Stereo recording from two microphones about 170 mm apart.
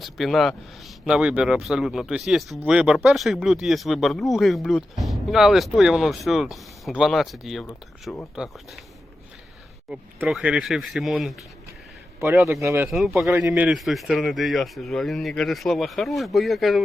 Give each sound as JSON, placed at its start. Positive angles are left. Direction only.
{"t": 0.0, "sound": "speech", "side_deg": 0}
{"t": 9.9, "sound": "speech", "side_deg": -5}
{"t": 12.9, "sound": "speech", "side_deg": 0}
{"t": 13.4, "sound": "speech", "side_deg": -15}
{"t": 13.7, "sound": "speech", "side_deg": 0}